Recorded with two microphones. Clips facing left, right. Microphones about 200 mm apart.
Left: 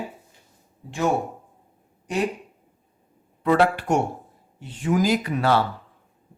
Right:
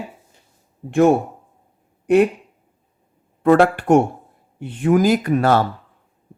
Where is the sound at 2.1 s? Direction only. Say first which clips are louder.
Right 12 dB; 60° right (ahead or behind).